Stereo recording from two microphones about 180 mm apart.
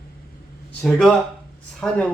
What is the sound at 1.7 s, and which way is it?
Speech, 5° left (ahead or behind).